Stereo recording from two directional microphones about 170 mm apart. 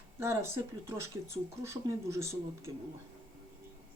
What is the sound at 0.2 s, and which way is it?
Speech, 15° right (ahead or behind).